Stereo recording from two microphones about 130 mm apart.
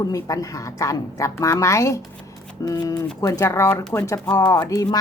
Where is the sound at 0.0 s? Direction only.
25° left (ahead or behind).